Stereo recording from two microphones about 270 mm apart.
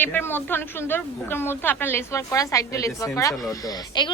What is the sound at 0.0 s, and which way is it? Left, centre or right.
A woman's voice, centre.